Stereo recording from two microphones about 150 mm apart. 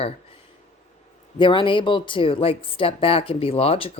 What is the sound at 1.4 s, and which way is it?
A woman's voice, 35° left (ahead or behind).